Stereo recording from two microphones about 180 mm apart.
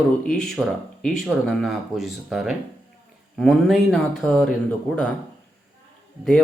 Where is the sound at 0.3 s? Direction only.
Centre (ahead or behind).